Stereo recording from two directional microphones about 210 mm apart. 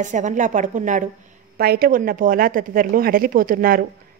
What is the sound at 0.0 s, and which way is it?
A woman's voice, 35° right (ahead or behind).